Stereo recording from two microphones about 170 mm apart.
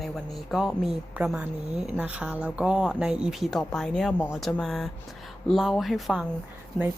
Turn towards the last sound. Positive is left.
turn(degrees=0)  # may be behind; listen again after turning